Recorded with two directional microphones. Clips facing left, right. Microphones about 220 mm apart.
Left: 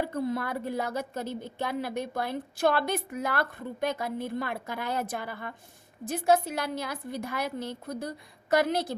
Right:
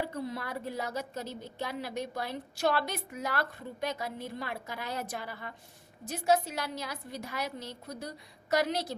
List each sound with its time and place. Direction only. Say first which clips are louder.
0.1 s a woman's voice: left 6 dB; 50° left (ahead or behind)